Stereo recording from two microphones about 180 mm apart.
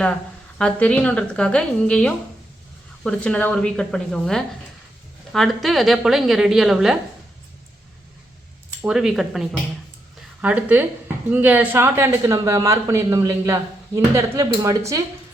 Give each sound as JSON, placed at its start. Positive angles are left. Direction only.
{"t": 0.6, "sound": "a woman's voice", "side_deg": 5}
{"t": 8.8, "sound": "a woman's voice", "side_deg": -5}
{"t": 10.2, "sound": "a sound", "side_deg": -10}
{"t": 11.3, "sound": "a man's voice", "side_deg": -10}